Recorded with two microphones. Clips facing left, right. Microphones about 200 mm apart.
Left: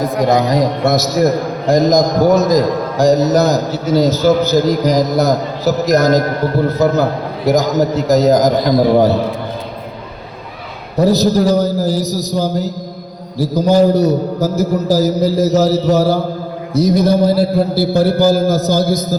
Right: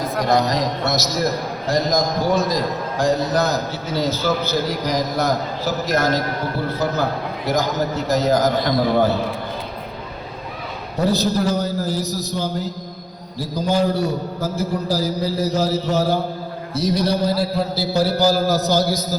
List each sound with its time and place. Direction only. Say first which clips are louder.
0.1 s a man's voice: left 4 dB; 20° left (ahead or behind)
0.5 s a man's voice: left 7 dB; 50° left (ahead or behind)
11.0 s a man's voice: left 7 dB; 40° left (ahead or behind)